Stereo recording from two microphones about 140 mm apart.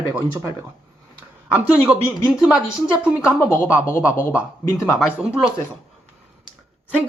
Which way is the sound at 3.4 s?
20° left (ahead or behind).